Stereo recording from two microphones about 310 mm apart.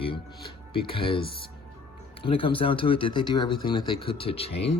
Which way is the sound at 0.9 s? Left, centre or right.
Centre.